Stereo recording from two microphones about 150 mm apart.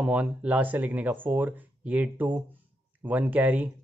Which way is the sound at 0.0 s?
10° right (ahead or behind).